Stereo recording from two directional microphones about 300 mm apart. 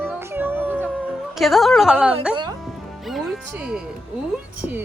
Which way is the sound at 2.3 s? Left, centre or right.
Centre.